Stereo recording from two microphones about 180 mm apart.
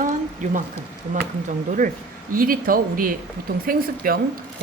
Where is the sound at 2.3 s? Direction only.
55° right (ahead or behind).